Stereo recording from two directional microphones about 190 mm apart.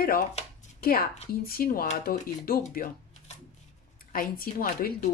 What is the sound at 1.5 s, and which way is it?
Speech, 50° left (ahead or behind).